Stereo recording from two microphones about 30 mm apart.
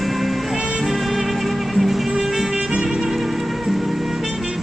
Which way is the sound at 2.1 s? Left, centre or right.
Centre.